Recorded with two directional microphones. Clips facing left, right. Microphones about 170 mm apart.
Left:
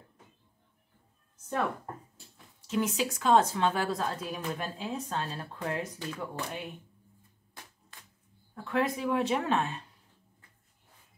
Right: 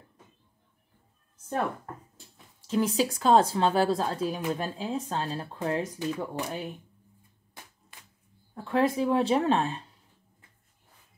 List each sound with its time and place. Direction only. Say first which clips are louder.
2.6 s speech: right 4 dB; 30° right (ahead or behind)
8.5 s speech: right 5 dB; 30° right (ahead or behind)